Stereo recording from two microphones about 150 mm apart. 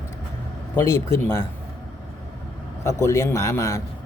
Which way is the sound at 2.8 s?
20° left (ahead or behind).